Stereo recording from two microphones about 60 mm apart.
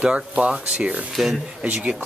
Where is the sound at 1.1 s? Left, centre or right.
Centre.